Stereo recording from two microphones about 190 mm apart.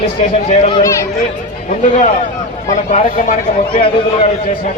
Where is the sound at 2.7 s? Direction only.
40° left (ahead or behind).